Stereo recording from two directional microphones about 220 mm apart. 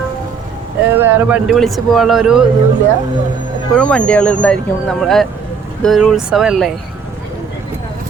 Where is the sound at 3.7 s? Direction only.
5° left (ahead or behind).